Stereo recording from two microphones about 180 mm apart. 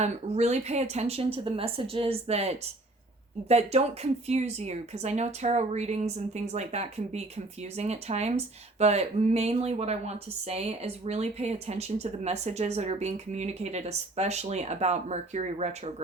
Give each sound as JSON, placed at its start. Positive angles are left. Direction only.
{"t": 0.0, "sound": "speech", "side_deg": -40}